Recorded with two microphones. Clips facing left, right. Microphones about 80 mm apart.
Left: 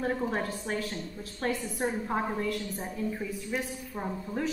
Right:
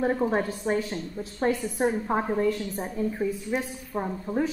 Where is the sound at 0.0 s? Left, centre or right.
Right.